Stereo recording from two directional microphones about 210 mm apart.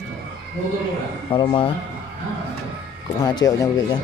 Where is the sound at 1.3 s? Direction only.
25° left (ahead or behind).